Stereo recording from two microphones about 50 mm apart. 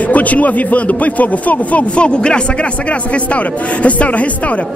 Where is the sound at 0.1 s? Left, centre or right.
Left.